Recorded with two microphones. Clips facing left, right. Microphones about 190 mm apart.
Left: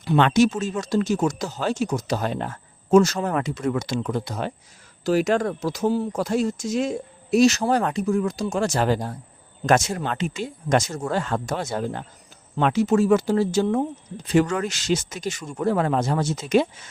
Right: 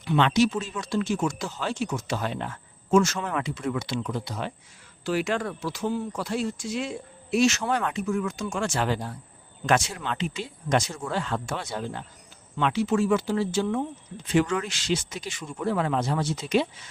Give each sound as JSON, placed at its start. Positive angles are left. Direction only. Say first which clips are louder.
{"t": 0.0, "sound": "speech", "louder": "left 4 dB", "side_deg": 45}